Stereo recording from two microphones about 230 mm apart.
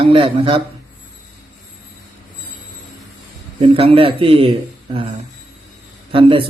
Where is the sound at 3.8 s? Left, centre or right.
Right.